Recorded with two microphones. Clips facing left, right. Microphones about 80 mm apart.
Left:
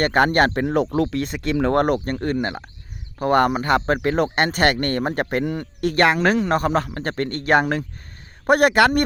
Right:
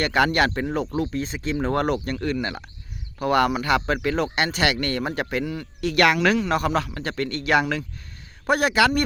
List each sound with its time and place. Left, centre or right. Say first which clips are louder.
0.0 s speech: left 3 dB; left
0.9 s a man's voice: left 4 dB; left
6.0 s a man's voice: left 1 dB; left